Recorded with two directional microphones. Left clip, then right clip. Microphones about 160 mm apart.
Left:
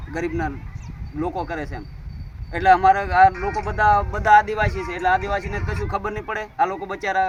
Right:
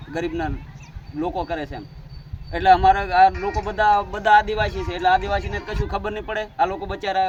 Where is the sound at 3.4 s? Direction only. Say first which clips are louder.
Even; 20° right (ahead or behind).